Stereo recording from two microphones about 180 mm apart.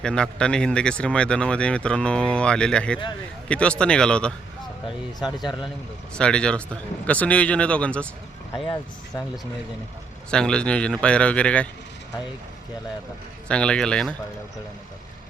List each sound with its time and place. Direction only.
0.0 s speech: 5° left (ahead or behind)
5.2 s speech: 25° left (ahead or behind)
6.1 s speech: 5° left (ahead or behind)
8.6 s speech: 25° left (ahead or behind)
10.3 s speech: 5° left (ahead or behind)
13.5 s speech: 5° left (ahead or behind)